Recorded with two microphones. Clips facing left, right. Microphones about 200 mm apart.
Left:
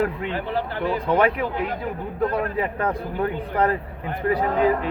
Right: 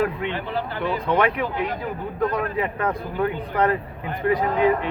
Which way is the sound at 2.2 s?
35° left (ahead or behind).